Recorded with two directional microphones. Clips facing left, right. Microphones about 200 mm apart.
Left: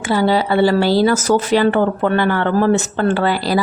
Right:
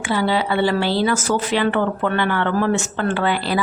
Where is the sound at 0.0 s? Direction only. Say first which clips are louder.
Left 4 dB; 40° left (ahead or behind).